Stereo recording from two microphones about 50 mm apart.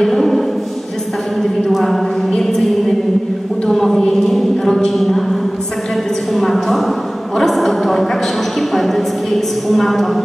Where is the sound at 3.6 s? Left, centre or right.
Centre.